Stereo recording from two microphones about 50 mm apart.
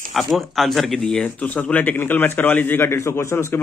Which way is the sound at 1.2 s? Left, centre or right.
Left.